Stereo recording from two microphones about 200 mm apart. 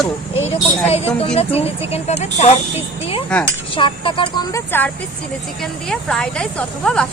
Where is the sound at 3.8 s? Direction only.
25° left (ahead or behind).